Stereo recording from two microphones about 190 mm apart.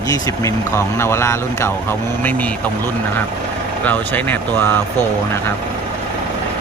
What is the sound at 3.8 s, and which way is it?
Speech, 10° left (ahead or behind).